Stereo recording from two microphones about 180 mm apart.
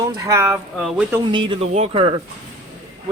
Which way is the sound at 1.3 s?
30° right (ahead or behind).